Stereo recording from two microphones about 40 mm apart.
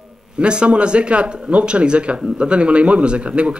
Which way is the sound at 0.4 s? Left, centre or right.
Right.